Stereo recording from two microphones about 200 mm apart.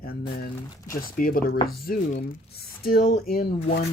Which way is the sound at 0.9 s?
45° left (ahead or behind).